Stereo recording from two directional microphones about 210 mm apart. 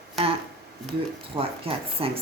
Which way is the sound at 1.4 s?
25° right (ahead or behind).